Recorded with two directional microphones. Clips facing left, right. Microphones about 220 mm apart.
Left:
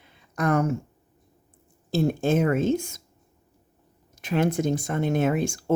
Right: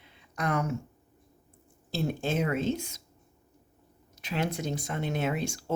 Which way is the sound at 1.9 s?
50° left (ahead or behind).